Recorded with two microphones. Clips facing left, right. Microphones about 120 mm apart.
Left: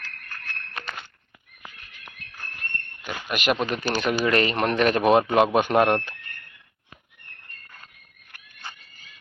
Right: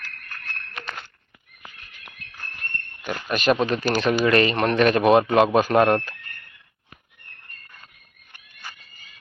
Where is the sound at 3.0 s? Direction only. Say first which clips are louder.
Right 4 dB; 5° left (ahead or behind).